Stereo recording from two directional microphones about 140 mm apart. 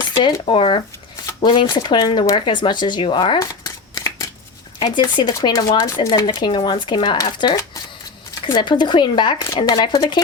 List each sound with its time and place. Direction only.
0.0 s a sound: 35° left (ahead or behind)
0.4 s speech: 40° left (ahead or behind)
3.9 s shuffling cards: 20° left (ahead or behind)
4.9 s speech: 35° left (ahead or behind)